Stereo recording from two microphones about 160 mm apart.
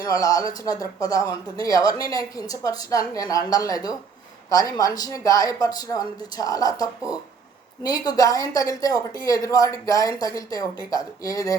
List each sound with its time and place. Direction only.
0.0 s speech: 20° left (ahead or behind)